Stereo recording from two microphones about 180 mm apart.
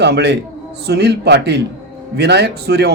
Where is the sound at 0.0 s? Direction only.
70° right (ahead or behind).